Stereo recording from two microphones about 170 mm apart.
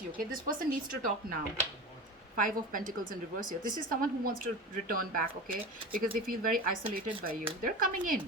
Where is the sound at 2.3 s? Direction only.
50° right (ahead or behind).